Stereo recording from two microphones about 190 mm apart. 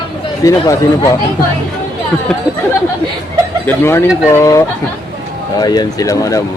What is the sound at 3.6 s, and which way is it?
Speech, 10° left (ahead or behind).